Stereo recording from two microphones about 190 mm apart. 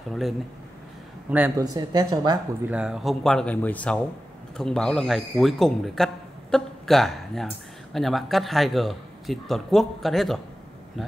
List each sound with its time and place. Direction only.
1.6 s speech: 20° right (ahead or behind)
2.7 s a man's voice: 5° right (ahead or behind)